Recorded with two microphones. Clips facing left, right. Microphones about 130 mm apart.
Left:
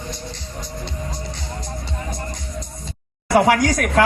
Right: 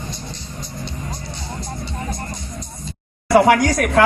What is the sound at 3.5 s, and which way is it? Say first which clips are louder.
Speech: right 2 dB; 25° right (ahead or behind).